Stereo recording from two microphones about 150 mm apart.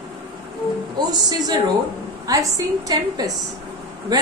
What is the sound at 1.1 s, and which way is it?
A woman's voice, 25° right (ahead or behind).